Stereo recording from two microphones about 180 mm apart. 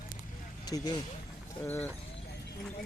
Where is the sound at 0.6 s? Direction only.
20° left (ahead or behind).